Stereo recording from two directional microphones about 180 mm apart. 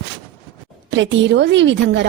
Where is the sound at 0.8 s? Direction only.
90° right.